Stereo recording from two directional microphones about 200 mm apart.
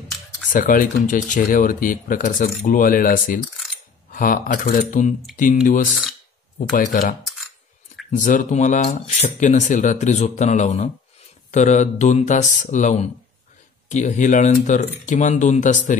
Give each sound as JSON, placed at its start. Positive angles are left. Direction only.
{"t": 0.5, "sound": "speech", "side_deg": 40}